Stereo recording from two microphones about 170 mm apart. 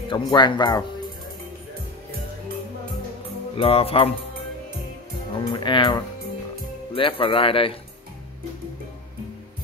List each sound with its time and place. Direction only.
0.1 s speech: 30° left (ahead or behind)
3.5 s speech: 35° left (ahead or behind)
5.3 s speech: 25° left (ahead or behind)